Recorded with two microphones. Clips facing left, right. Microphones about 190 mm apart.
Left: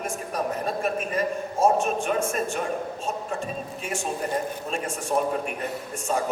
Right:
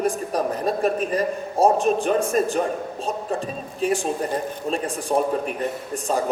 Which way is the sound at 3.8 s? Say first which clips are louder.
Right 10 dB; 35° right (ahead or behind).